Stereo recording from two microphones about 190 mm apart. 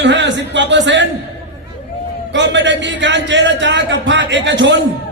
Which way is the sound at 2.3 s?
70° right (ahead or behind).